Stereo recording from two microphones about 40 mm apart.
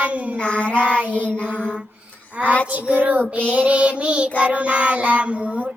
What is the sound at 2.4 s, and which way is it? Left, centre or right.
Child singing, left.